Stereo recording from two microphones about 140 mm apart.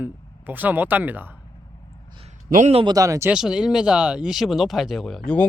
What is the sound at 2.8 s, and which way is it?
Speech, 25° right (ahead or behind).